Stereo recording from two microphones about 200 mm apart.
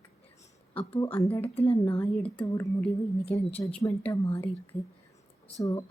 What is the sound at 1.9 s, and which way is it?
Speech, 10° left (ahead or behind).